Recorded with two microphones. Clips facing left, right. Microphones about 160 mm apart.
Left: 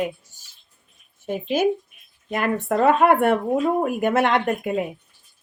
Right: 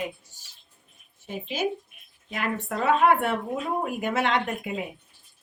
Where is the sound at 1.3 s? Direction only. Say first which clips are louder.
Left 8 dB; 50° left (ahead or behind).